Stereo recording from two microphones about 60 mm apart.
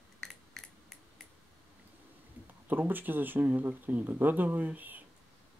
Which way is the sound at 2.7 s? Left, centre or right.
Right.